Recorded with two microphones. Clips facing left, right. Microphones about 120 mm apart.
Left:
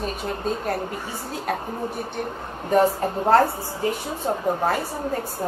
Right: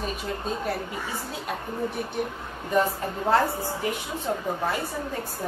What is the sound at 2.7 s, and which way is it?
A woman's voice, 40° left (ahead or behind).